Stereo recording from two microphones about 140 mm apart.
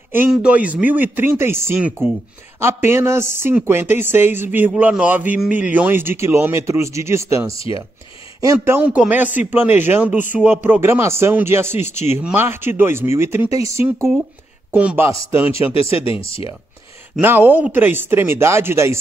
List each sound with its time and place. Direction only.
0.3 s a man's voice: 10° right (ahead or behind)
7.5 s speech: 40° left (ahead or behind)
8.5 s a man's voice: 10° right (ahead or behind)
15.7 s speech: 45° left (ahead or behind)
17.2 s a man's voice: 15° right (ahead or behind)